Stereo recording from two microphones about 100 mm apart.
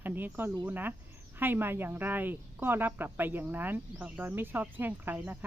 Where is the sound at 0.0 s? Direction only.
20° right (ahead or behind).